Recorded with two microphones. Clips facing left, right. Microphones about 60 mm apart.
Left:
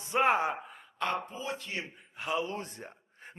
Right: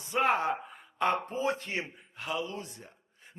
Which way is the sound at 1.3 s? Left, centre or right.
Right.